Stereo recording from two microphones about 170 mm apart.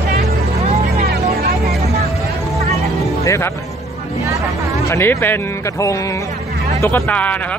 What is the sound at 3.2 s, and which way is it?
Music, 15° left (ahead or behind).